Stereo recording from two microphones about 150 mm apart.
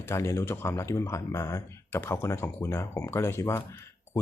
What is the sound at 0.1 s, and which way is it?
Speech, 20° left (ahead or behind).